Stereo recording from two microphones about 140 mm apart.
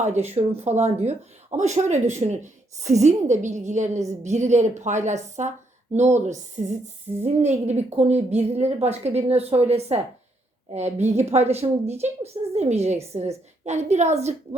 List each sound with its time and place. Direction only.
0.0 s a woman's voice: 55° right (ahead or behind)